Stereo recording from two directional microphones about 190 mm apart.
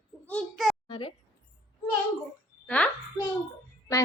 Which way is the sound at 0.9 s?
30° left (ahead or behind).